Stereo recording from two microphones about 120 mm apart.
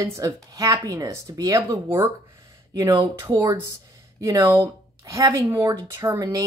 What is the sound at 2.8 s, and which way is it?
A woman's voice, 40° right (ahead or behind).